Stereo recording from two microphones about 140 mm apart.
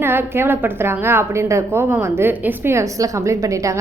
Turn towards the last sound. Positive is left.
turn(degrees=-25)  # may be behind; listen again after turning